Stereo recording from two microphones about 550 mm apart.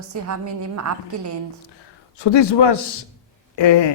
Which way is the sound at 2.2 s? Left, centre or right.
Left.